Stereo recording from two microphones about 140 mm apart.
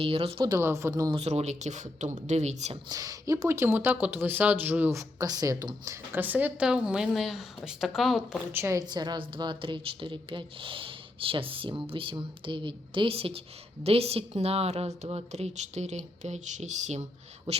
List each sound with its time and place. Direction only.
0.0 s a woman's voice: 45° right (ahead or behind)
0.4 s a woman's voice: 20° right (ahead or behind)
1.1 s a woman's voice: 50° right (ahead or behind)
2.9 s speech: 25° right (ahead or behind); by 8.4 s centre (ahead or behind)
8.5 s speech: 20° right (ahead or behind)
8.8 s a woman's voice: 30° right (ahead or behind); by 17.0 s 55° right (ahead or behind)
17.5 s a woman's voice: 45° right (ahead or behind)